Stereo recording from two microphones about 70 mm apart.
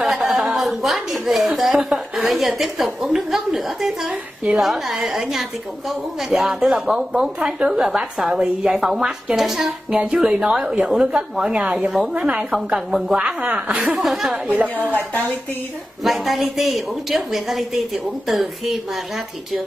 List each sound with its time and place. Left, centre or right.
0.2 s chuckle: centre
1.3 s a woman's voice: centre
14.6 s speech: right
16.0 s speech: centre